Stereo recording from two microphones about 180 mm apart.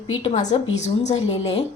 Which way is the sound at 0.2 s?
40° left (ahead or behind).